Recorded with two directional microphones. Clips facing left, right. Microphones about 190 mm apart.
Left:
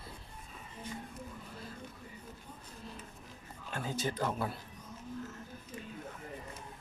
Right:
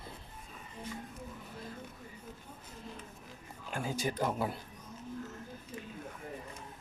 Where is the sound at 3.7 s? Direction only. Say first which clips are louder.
Right 1 dB; 15° right (ahead or behind).